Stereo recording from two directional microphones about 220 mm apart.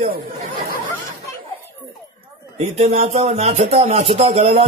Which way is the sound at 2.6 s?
30° right (ahead or behind).